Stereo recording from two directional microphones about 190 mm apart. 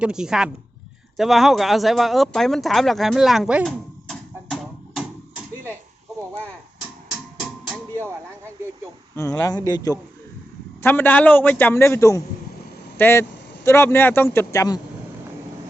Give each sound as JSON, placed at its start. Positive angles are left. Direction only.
{"t": 0.0, "sound": "a woman's voice", "side_deg": -5}
{"t": 9.1, "sound": "a man's voice", "side_deg": 15}